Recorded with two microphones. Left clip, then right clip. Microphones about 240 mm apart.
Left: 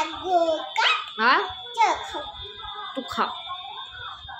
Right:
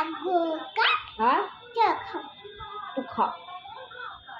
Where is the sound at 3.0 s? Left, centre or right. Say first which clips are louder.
Even; left.